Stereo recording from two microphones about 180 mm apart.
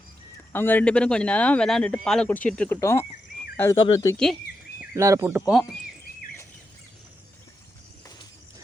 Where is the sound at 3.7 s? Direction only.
25° left (ahead or behind).